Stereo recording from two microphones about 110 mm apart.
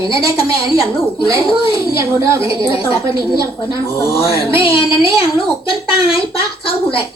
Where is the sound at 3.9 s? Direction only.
55° left (ahead or behind).